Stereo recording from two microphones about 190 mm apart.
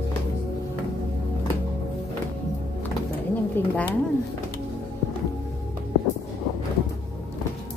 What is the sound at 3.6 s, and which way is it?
Speech, 10° left (ahead or behind).